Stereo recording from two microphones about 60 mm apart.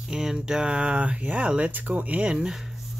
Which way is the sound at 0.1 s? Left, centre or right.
Centre.